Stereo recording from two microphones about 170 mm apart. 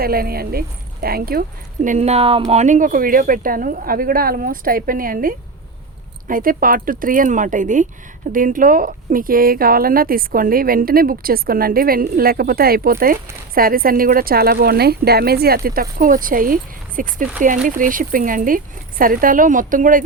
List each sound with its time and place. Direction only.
0.0 s speech: 65° right (ahead or behind)